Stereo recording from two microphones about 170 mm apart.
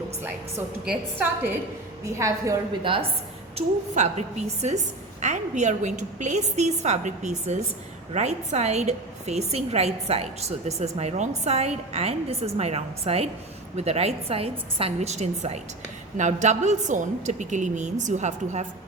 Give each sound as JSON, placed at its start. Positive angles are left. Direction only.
{"t": 0.2, "sound": "a woman's voice", "side_deg": -10}
{"t": 3.5, "sound": "a woman's voice", "side_deg": -40}